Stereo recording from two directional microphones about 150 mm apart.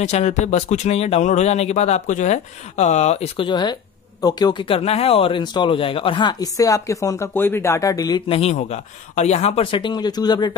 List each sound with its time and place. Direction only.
0.0 s speech: 45° left (ahead or behind)
3.4 s speech: 30° left (ahead or behind)
8.3 s speech: 45° left (ahead or behind); by 10.5 s 30° left (ahead or behind)